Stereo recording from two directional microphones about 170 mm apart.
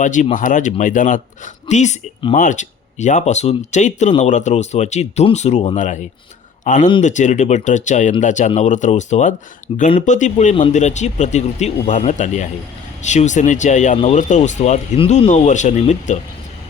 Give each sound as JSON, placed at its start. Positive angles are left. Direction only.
{"t": 0.0, "sound": "speech", "side_deg": 50}
{"t": 9.7, "sound": "speech", "side_deg": 35}
{"t": 10.1, "sound": "speech", "side_deg": 45}